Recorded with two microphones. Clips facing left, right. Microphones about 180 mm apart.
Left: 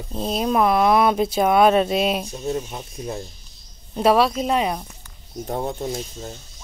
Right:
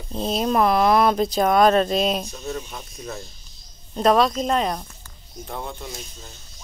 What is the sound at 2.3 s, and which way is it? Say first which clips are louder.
Speech: left 5 dB; 25° left (ahead or behind).